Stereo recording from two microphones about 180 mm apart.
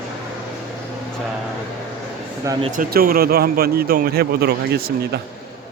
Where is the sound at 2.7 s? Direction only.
55° right (ahead or behind).